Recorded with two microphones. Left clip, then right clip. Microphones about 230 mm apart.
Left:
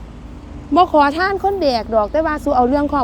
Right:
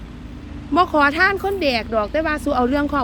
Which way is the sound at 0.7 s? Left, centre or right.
Centre.